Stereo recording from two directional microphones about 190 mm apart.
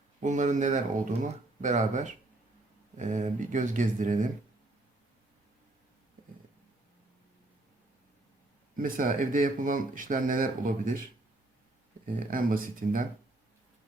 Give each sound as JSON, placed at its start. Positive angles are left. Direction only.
{"t": 0.2, "sound": "speech", "side_deg": -40}
{"t": 8.7, "sound": "speech", "side_deg": -45}
{"t": 12.3, "sound": "speech", "side_deg": -45}